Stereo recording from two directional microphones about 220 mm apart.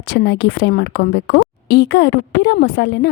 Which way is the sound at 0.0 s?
50° left (ahead or behind).